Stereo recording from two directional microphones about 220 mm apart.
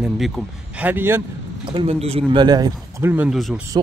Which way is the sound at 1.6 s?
25° right (ahead or behind).